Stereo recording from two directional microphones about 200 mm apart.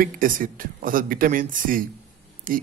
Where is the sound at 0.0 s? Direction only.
45° right (ahead or behind).